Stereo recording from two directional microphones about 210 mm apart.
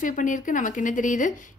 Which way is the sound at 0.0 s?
40° left (ahead or behind).